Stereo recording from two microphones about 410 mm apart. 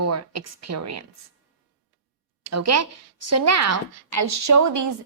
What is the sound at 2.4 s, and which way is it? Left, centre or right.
A woman's voice, right.